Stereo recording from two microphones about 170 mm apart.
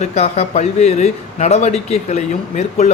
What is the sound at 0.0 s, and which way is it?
Speech, 40° left (ahead or behind).